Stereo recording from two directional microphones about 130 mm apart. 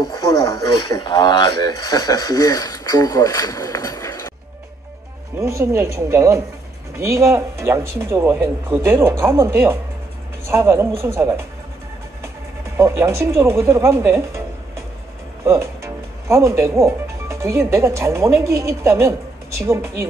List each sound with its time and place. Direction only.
0.0 s speech: 30° left (ahead or behind)
5.4 s speech: 20° right (ahead or behind)
12.7 s speech: 20° right (ahead or behind)
15.4 s speech: 20° right (ahead or behind)